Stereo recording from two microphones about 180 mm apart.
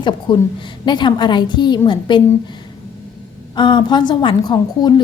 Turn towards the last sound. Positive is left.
turn(degrees=25)  # may be behind; listen again after turning